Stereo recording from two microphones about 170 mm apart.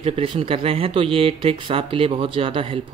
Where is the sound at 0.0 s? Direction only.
35° right (ahead or behind).